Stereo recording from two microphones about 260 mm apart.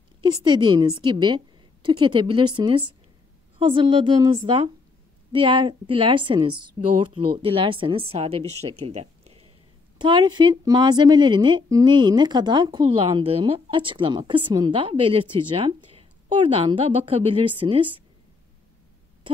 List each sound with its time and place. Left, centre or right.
0.2 s a woman's voice: centre
8.5 s speech: right
8.8 s a woman's voice: right